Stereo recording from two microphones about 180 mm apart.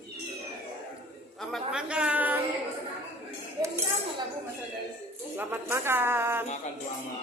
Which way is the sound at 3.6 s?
25° right (ahead or behind).